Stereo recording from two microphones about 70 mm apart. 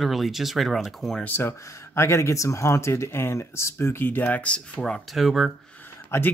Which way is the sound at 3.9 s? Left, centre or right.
Left.